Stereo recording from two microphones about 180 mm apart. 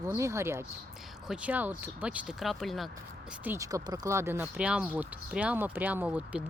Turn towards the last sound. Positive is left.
turn(degrees=-10)  # may be behind; listen again after turning